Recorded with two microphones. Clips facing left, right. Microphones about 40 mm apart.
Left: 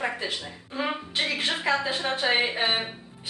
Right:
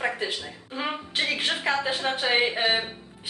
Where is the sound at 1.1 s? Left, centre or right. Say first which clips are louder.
Right 3 dB; right.